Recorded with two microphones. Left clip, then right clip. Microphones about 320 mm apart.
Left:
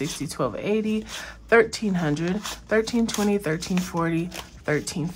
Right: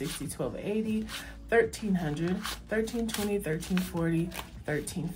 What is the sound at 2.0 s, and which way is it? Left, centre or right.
Speech, left.